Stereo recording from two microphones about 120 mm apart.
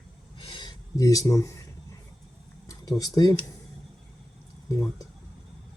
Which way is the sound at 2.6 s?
35° left (ahead or behind).